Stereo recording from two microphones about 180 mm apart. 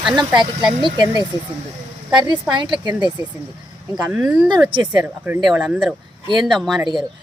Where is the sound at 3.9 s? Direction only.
5° right (ahead or behind).